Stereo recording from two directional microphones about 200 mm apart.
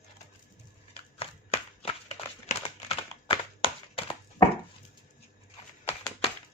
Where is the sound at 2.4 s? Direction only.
30° left (ahead or behind).